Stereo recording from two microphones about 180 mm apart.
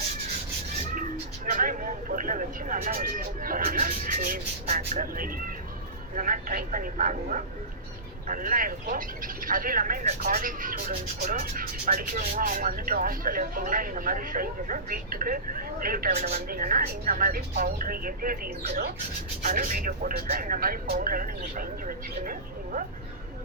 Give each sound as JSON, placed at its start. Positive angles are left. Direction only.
{"t": 1.5, "sound": "speech", "side_deg": -50}